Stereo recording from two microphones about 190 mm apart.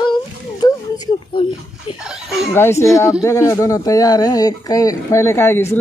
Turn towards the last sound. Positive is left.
turn(degrees=10)  # may be behind; listen again after turning